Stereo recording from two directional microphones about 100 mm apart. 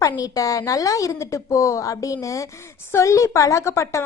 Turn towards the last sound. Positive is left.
turn(degrees=30)  # may be behind; listen again after turning